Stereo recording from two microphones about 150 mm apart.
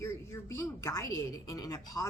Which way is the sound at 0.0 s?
20° left (ahead or behind).